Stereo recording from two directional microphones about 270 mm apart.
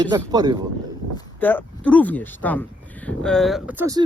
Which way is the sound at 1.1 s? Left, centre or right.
Centre.